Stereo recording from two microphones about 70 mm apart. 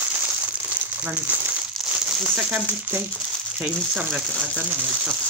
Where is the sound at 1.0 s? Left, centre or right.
Right.